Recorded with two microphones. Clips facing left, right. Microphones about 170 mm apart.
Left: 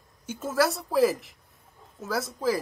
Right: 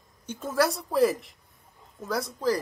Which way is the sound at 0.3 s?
5° left (ahead or behind).